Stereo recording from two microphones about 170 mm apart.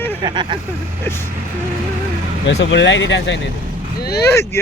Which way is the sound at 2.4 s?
90° left.